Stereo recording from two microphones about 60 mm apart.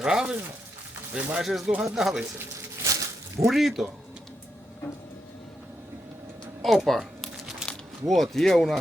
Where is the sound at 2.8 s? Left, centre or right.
Right.